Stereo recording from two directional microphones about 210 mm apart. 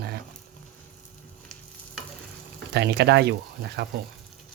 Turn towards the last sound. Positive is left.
turn(degrees=-50)  # may be behind; listen again after turning